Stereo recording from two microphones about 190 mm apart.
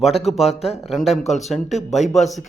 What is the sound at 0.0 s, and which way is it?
A man's voice, centre (ahead or behind).